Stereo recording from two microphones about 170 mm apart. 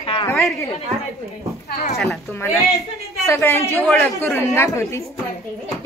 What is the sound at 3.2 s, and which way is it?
Speech, 15° left (ahead or behind).